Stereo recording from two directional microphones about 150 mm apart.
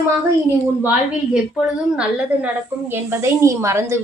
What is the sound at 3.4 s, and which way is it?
Speech, 20° right (ahead or behind).